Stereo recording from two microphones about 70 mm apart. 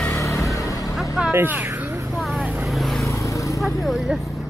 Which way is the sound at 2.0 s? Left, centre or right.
Centre.